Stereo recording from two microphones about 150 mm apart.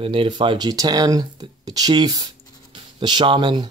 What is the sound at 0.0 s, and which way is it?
A man's voice, 35° right (ahead or behind).